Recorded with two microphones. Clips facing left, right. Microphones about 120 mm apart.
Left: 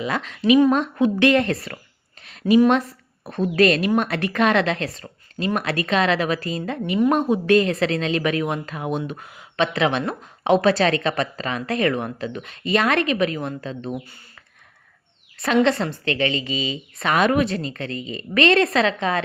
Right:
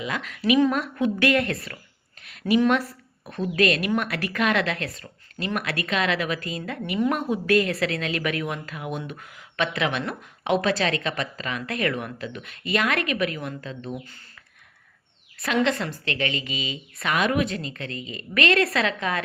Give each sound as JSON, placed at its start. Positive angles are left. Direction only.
{"t": 0.0, "sound": "a woman's voice", "side_deg": 35}
{"t": 2.2, "sound": "a sound", "side_deg": 30}
{"t": 3.5, "sound": "a woman's voice", "side_deg": 35}
{"t": 15.4, "sound": "a woman's voice", "side_deg": 30}